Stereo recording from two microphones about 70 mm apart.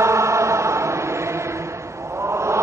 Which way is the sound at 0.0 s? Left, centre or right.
Right.